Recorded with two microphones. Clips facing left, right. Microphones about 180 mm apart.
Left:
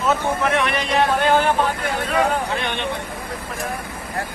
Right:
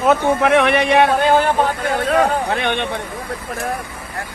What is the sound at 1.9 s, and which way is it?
A man's voice, 50° right (ahead or behind).